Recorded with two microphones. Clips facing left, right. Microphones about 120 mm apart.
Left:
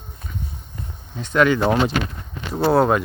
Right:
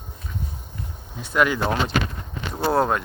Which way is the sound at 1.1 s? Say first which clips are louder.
Left 4 dB; 5° right (ahead or behind).